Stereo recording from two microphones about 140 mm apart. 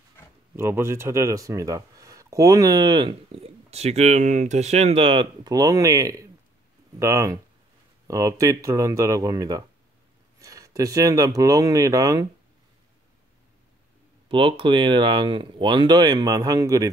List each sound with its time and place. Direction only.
0.6 s speech: 20° right (ahead or behind)
14.3 s speech: 40° right (ahead or behind)